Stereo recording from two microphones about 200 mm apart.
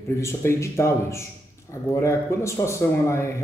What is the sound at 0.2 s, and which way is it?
Speech, 15° left (ahead or behind).